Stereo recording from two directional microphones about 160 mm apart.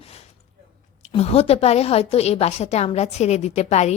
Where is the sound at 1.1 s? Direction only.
40° left (ahead or behind).